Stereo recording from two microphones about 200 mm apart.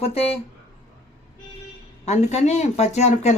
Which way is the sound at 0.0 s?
30° left (ahead or behind).